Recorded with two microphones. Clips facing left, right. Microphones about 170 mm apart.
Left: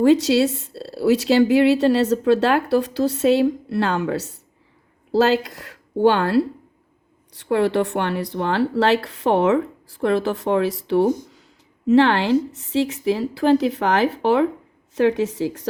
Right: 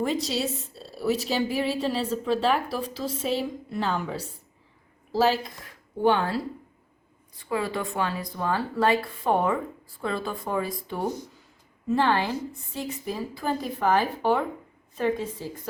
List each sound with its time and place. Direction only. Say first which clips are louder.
0.0 s a woman's voice: left 12 dB; 75° left (ahead or behind)